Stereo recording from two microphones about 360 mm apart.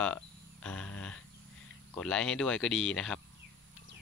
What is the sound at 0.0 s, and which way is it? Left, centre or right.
Cricket, centre.